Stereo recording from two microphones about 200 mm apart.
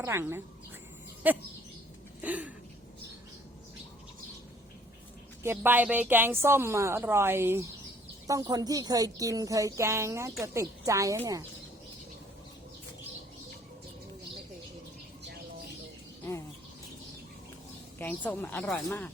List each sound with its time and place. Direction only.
0.0 s a woman's voice: 15° right (ahead or behind)
5.4 s a woman's voice: 10° right (ahead or behind)
18.0 s speech: 10° left (ahead or behind)